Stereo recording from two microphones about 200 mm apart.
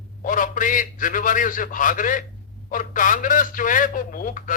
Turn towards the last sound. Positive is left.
turn(degrees=40)  # may be behind; listen again after turning